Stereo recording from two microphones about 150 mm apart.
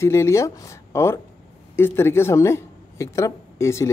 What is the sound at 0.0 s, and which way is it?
A woman's voice, 20° left (ahead or behind).